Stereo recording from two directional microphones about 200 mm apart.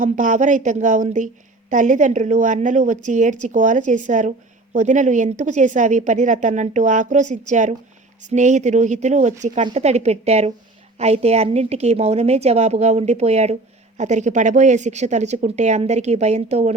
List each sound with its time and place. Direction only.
0.0 s a woman's voice: 40° right (ahead or behind)